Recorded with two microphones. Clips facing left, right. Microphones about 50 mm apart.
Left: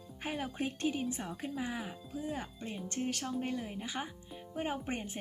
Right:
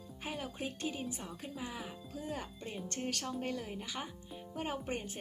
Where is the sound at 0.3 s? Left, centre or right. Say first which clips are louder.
Left 5 dB; left.